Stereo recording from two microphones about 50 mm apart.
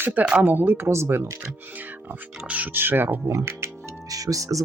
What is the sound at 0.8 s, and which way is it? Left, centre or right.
Speech, right.